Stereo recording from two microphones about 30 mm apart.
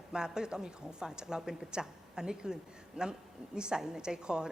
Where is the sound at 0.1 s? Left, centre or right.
Right.